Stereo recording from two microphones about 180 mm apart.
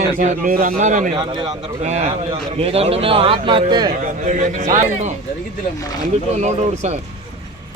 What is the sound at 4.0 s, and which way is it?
A man's voice, 45° right (ahead or behind).